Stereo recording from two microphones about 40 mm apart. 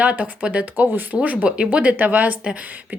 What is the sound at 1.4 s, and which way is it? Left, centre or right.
Speech, right.